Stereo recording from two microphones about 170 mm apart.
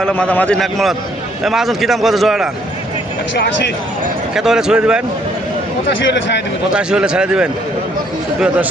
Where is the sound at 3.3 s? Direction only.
90° left.